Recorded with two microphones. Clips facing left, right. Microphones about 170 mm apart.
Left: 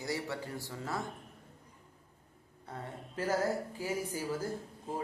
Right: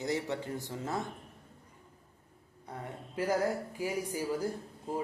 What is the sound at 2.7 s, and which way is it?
A woman's voice, 15° right (ahead or behind).